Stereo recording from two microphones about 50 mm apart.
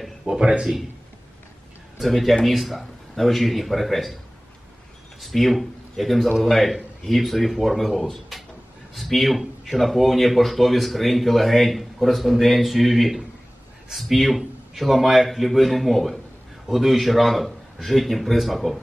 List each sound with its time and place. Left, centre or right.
0.0 s a sound: centre
0.4 s speech: centre
2.0 s speech: centre
5.2 s speech: centre
8.3 s a sound: centre
8.9 s speech: centre